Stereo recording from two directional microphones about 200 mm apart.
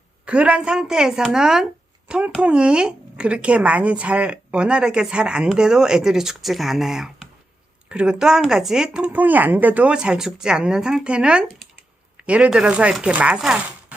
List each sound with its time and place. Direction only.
0.3 s speech: 5° right (ahead or behind)